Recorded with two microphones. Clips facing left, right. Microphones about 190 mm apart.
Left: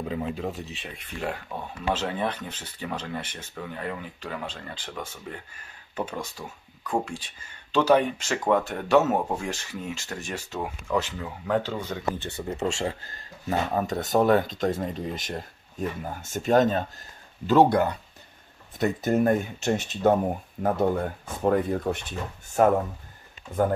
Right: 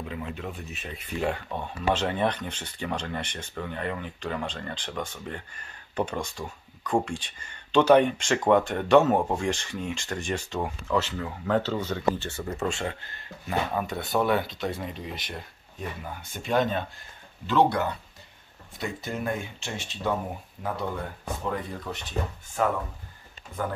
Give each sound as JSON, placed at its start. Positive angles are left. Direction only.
{"t": 0.1, "sound": "speech", "side_deg": 35}
{"t": 0.8, "sound": "speech", "side_deg": -5}
{"t": 12.7, "sound": "speech", "side_deg": 35}